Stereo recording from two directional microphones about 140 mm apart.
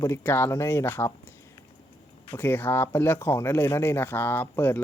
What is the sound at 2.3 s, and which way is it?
Speech, 15° left (ahead or behind).